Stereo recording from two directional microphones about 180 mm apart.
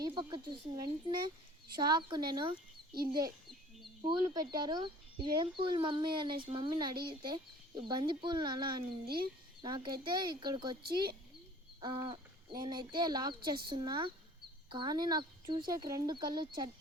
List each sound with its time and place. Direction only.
0.0 s speech: 25° right (ahead or behind)
11.8 s speech: 25° right (ahead or behind)